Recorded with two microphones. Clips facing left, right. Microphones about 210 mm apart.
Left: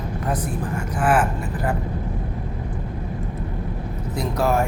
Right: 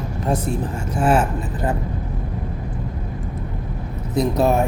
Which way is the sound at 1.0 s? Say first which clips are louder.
Right 2 dB; 25° right (ahead or behind).